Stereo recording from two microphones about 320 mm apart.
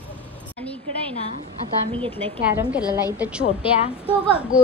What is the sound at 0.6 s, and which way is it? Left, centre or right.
Speech, centre.